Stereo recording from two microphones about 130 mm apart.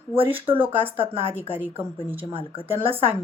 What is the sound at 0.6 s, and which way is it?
Speech, 15° right (ahead or behind).